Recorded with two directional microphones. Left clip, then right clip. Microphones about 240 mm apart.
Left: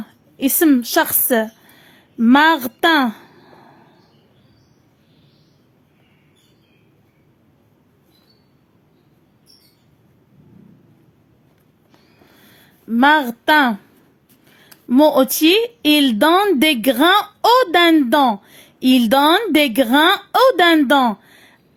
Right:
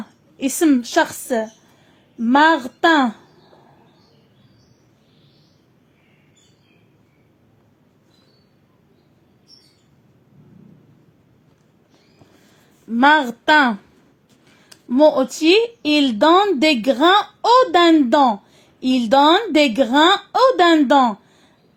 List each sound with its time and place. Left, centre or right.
0.3 s speech: centre
12.9 s speech: centre
14.6 s speech: left